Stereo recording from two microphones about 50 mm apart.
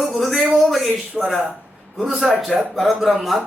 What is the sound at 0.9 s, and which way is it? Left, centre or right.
Speech, centre.